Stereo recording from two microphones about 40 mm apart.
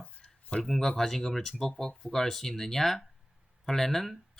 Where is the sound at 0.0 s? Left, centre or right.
Left.